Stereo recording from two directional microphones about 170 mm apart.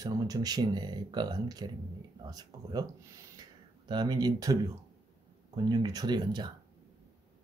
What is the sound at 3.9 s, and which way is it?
Speech, 25° right (ahead or behind).